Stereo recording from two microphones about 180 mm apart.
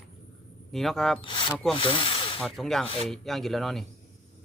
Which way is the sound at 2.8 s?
30° left (ahead or behind).